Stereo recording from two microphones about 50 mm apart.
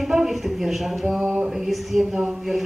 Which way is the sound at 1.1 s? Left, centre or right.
Right.